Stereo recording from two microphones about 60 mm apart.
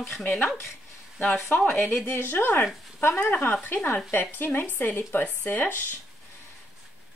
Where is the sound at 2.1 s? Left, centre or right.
Left.